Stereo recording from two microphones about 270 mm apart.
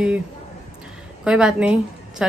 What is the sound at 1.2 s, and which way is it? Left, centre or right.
A woman's voice, centre.